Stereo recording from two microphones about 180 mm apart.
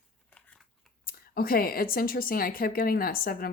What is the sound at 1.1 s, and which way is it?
A woman's voice, 55° left (ahead or behind).